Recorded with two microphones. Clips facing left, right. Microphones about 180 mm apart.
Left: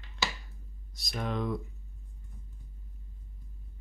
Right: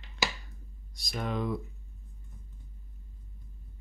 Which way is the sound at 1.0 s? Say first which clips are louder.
Even; centre (ahead or behind).